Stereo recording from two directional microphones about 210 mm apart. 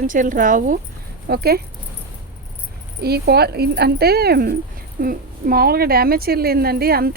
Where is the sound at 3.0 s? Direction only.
50° right (ahead or behind).